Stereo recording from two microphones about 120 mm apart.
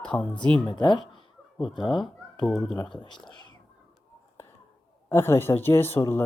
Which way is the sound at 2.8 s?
40° left (ahead or behind).